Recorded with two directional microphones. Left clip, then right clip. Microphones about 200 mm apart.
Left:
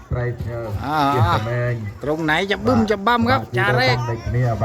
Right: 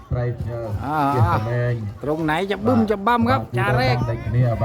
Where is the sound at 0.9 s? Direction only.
Centre (ahead or behind).